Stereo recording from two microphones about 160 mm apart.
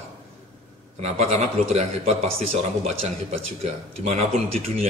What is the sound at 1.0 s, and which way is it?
A man's voice, 40° right (ahead or behind).